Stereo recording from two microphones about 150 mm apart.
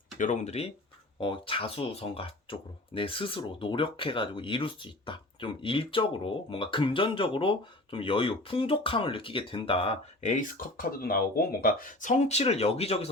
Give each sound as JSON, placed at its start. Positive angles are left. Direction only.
{"t": 0.2, "sound": "speech", "side_deg": 55}